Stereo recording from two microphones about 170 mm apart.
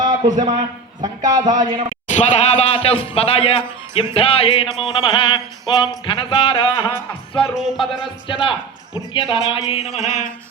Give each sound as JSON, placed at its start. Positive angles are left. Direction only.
{"t": 0.0, "sound": "a sound", "side_deg": -25}
{"t": 1.0, "sound": "speech", "side_deg": -25}
{"t": 2.1, "sound": "speech", "side_deg": 40}
{"t": 7.4, "sound": "speech", "side_deg": -5}
{"t": 8.0, "sound": "speech", "side_deg": 30}